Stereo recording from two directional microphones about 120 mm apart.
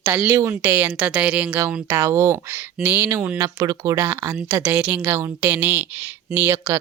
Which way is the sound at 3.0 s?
25° right (ahead or behind).